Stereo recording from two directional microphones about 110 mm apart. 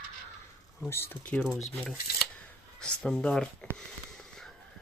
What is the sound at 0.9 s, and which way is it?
Speech, 20° left (ahead or behind).